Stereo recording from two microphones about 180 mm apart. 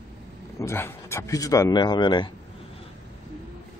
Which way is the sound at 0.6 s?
15° left (ahead or behind).